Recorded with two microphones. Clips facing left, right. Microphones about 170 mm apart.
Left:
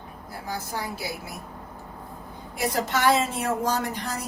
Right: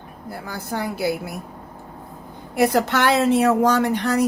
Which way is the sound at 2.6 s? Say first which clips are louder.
Right 7 dB; 65° right (ahead or behind).